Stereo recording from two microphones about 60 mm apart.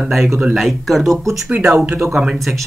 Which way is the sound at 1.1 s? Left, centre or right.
Right.